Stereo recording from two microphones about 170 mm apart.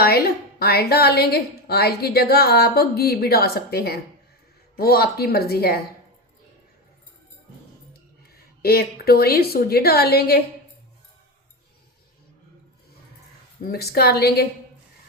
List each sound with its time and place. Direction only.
0.6 s a woman's voice: 65° left (ahead or behind)
8.6 s a woman's voice: 65° left (ahead or behind)
13.7 s a woman's voice: 65° left (ahead or behind)